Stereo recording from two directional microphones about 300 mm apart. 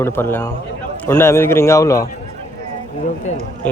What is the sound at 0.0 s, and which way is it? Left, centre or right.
A man's voice, centre.